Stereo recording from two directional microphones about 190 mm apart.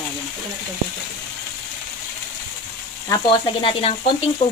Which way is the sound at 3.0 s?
20° left (ahead or behind).